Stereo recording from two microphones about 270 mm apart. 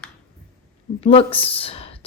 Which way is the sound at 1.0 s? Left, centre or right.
Left.